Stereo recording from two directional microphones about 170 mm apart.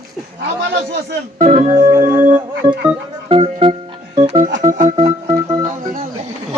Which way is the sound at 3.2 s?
35° right (ahead or behind).